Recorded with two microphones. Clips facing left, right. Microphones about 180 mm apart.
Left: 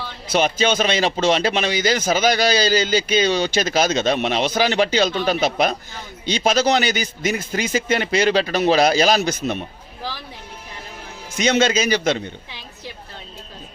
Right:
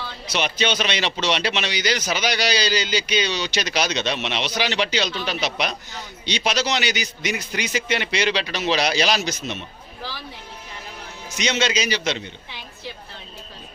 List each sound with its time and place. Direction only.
0.3 s speech: 45° left (ahead or behind)
11.3 s speech: 55° left (ahead or behind)